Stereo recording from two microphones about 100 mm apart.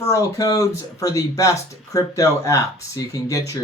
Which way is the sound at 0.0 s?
35° left (ahead or behind).